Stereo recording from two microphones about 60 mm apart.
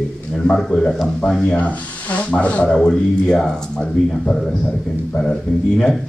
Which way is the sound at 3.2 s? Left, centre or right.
Centre.